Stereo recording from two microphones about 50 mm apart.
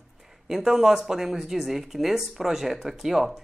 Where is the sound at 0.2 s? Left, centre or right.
Centre.